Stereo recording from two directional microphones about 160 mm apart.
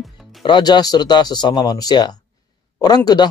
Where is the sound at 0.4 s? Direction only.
30° left (ahead or behind).